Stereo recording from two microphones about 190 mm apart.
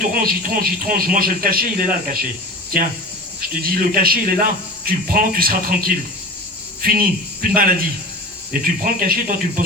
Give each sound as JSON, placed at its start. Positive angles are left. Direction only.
{"t": 0.0, "sound": "speech", "side_deg": -50}
{"t": 3.5, "sound": "speech", "side_deg": -50}